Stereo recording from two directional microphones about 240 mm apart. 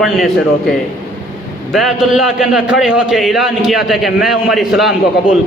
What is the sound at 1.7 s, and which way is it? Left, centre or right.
A man's voice, centre.